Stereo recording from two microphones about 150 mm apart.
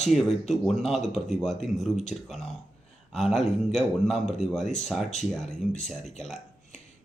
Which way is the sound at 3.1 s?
Centre (ahead or behind).